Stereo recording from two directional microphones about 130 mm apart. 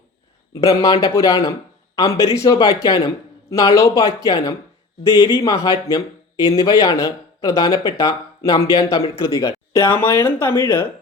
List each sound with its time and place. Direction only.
0.5 s speech: 25° left (ahead or behind)